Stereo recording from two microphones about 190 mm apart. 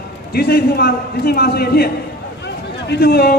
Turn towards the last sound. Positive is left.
turn(degrees=55)  # may be behind; listen again after turning